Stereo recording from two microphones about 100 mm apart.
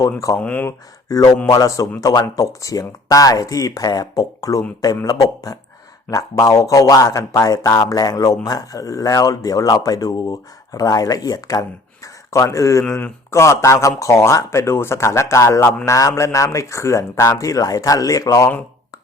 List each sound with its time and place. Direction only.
0.3 s speech: 15° left (ahead or behind)
1.0 s a man's voice: 35° left (ahead or behind)